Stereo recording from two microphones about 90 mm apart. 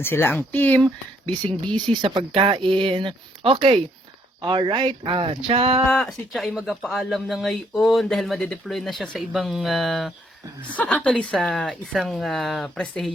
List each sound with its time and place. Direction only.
0.0 s speech: 25° left (ahead or behind)
1.6 s speech: 55° right (ahead or behind); by 3.8 s 85° right
4.4 s speech: 60° right (ahead or behind); by 5.4 s 75° right (ahead or behind)
5.5 s speech: 90° right
5.9 s speech: 5° left (ahead or behind)
10.8 s a woman's voice: 15° left (ahead or behind)